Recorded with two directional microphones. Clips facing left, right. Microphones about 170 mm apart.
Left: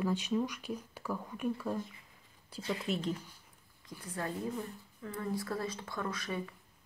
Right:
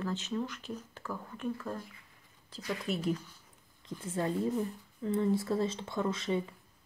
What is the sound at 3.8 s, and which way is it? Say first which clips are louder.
Speech: right 6 dB; 25° right (ahead or behind).